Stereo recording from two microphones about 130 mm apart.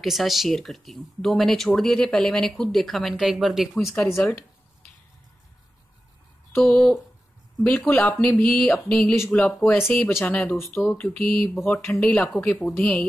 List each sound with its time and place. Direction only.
0.0 s speech: centre (ahead or behind)
3.9 s speech: 10° left (ahead or behind)
6.5 s speech: 5° left (ahead or behind)
9.8 s speech: 15° left (ahead or behind)
11.8 s speech: 20° left (ahead or behind)